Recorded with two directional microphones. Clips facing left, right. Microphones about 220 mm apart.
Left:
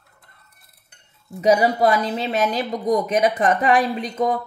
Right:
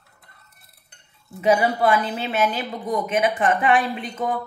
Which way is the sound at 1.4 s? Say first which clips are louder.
Left 2 dB; 40° left (ahead or behind).